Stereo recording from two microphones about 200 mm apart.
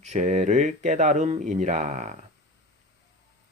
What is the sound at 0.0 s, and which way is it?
Speech, 35° right (ahead or behind).